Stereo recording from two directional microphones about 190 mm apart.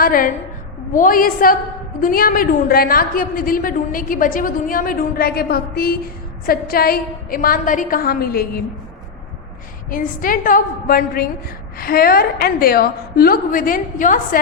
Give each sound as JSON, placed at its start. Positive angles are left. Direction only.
{"t": 0.0, "sound": "a woman's voice", "side_deg": 45}
{"t": 9.9, "sound": "a woman's voice", "side_deg": 45}